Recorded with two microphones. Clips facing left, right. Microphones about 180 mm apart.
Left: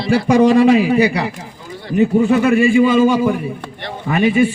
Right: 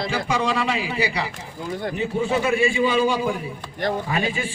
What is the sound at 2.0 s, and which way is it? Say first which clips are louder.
A man's voice: left 11 dB; 55° left (ahead or behind).